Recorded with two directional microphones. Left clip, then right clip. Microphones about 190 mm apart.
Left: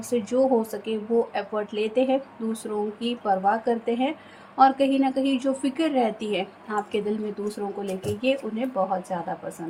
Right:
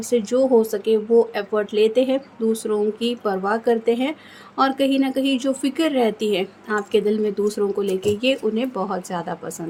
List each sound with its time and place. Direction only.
0.1 s speech: 30° right (ahead or behind)